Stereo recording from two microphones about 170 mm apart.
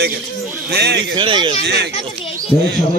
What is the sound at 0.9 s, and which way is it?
Speech, 30° right (ahead or behind).